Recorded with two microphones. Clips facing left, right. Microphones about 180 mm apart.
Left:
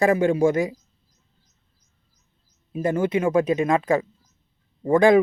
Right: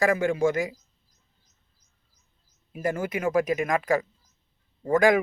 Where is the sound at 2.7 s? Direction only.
25° left (ahead or behind).